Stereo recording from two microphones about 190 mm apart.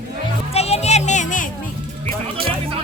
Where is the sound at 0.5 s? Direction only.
35° left (ahead or behind).